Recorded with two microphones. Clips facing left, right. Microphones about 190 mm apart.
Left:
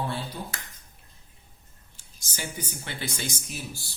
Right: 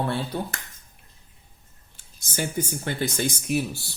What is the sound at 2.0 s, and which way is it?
Speech, 55° right (ahead or behind).